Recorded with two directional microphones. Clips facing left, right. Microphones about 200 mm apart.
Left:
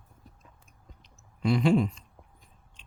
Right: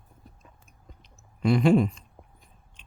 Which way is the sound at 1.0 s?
55° right (ahead or behind).